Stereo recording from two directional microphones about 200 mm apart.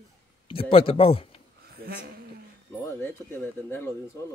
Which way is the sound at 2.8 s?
10° left (ahead or behind).